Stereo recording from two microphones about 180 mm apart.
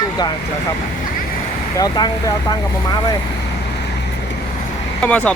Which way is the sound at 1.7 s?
20° left (ahead or behind).